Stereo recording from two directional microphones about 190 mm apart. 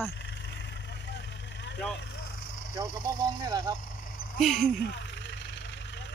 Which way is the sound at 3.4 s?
20° right (ahead or behind).